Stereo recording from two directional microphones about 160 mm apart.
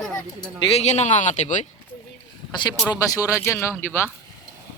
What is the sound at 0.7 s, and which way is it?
Speech, 45° left (ahead or behind).